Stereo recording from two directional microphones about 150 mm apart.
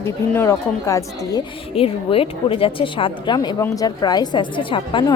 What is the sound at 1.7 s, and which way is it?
A woman's voice, 40° left (ahead or behind).